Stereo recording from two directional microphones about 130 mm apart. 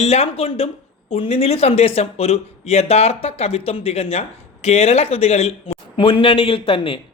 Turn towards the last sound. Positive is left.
turn(degrees=45)  # may be behind; listen again after turning